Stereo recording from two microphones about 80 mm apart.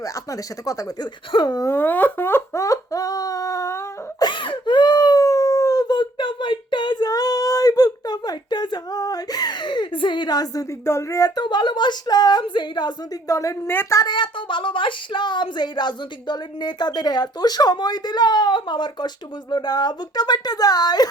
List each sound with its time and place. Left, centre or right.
0.0 s speech: left
1.3 s speech: left
1.6 s speech: left
2.6 s a sound: left
4.2 s a sound: left
5.9 s a sound: left
10.8 s speech: left
11.3 s speech: left
13.2 s speech: left
14.1 s speech: left